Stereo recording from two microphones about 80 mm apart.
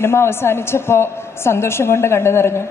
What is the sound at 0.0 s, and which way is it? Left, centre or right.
A woman's voice, left.